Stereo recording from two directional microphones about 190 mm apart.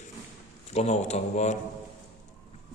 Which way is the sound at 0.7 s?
35° left (ahead or behind).